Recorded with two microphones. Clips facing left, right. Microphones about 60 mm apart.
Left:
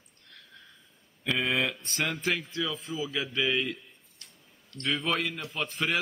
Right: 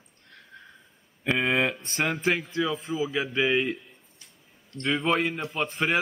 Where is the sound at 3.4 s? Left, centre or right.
Right.